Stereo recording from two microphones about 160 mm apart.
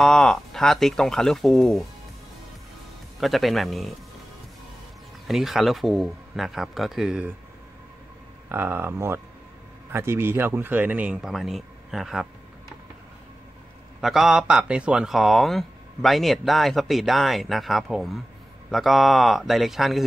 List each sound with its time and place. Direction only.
0.0 s speech: 5° left (ahead or behind)
3.2 s speech: centre (ahead or behind)
5.2 s speech: centre (ahead or behind)
8.5 s speech: 15° right (ahead or behind)
14.0 s speech: centre (ahead or behind)